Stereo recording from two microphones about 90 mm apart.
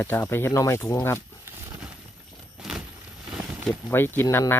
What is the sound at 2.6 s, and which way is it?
Vehicle, 5° right (ahead or behind).